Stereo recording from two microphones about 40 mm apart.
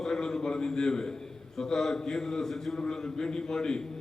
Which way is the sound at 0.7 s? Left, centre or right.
Centre.